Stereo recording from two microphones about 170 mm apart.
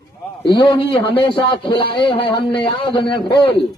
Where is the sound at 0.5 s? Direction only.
30° left (ahead or behind).